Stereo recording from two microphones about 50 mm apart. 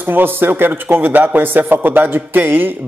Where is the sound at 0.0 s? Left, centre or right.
Right.